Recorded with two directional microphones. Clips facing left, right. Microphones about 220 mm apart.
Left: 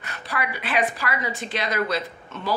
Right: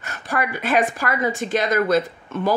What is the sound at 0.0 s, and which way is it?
A woman's voice, 45° right (ahead or behind).